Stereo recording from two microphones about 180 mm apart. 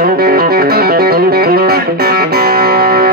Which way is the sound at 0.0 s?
60° right (ahead or behind).